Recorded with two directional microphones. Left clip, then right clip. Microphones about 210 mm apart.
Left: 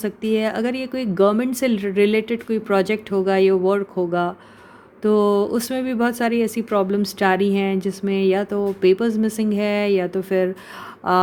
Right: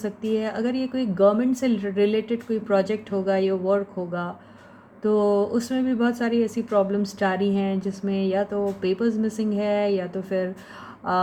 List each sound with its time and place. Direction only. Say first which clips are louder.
0.0 s speech: left 5 dB; 40° left (ahead or behind)